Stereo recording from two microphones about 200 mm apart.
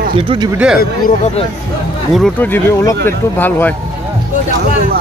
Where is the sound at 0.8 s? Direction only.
45° left (ahead or behind).